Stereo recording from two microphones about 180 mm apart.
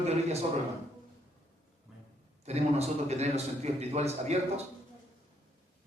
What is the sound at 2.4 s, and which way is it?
A man's voice, 35° right (ahead or behind).